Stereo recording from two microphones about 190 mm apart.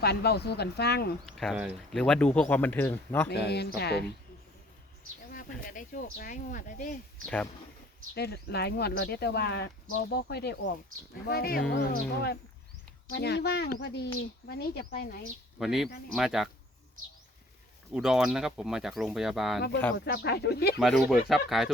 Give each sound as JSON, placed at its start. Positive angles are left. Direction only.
{"t": 0.0, "sound": "speech", "side_deg": 60}
{"t": 1.2, "sound": "speech", "side_deg": 0}
{"t": 3.2, "sound": "speech", "side_deg": 60}
{"t": 5.3, "sound": "speech", "side_deg": 45}
{"t": 8.1, "sound": "speech", "side_deg": 55}
{"t": 15.5, "sound": "speech", "side_deg": 0}
{"t": 17.9, "sound": "speech", "side_deg": -5}
{"t": 20.1, "sound": "speech", "side_deg": 55}
{"t": 20.7, "sound": "speech", "side_deg": 0}